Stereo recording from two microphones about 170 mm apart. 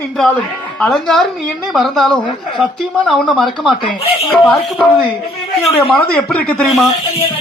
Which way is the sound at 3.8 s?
35° left (ahead or behind).